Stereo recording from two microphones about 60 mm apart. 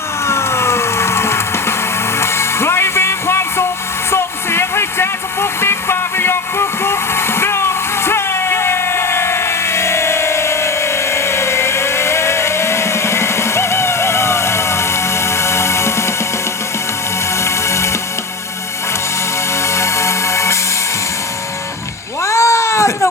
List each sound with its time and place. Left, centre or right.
0.3 s music: left
4.1 s vehicle: left
17.4 s music: left
19.6 s music: left
22.2 s cat: left